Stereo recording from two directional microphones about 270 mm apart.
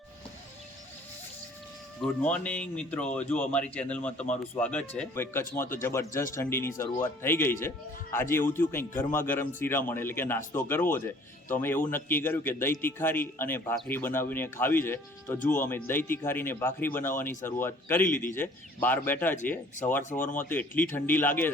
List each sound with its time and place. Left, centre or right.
2.0 s a man's voice: centre
11.6 s a man's voice: centre
20.0 s speech: left
20.5 s a man's voice: centre